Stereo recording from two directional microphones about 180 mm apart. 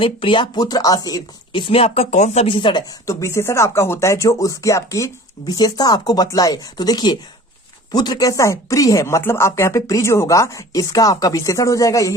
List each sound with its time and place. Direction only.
0.0 s speech: 30° left (ahead or behind)